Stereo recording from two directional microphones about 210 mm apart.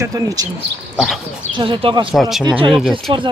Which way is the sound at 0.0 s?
15° right (ahead or behind).